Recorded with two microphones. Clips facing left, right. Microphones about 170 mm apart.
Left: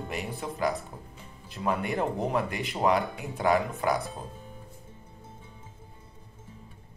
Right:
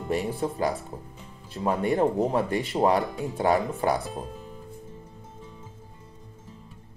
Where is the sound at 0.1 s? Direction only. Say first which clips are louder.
Right 11 dB; 35° right (ahead or behind).